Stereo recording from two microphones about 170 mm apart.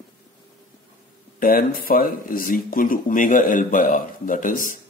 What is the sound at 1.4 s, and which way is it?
Speech, 55° left (ahead or behind).